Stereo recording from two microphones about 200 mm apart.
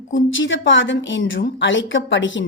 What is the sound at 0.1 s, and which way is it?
A woman's voice, 70° left (ahead or behind).